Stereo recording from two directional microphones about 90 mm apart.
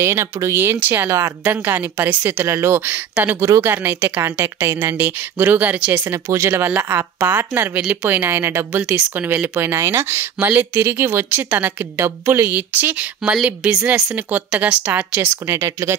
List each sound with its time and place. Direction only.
0.0 s speech: 30° right (ahead or behind)
6.1 s speech: 35° right (ahead or behind)
15.5 s speech: 30° right (ahead or behind)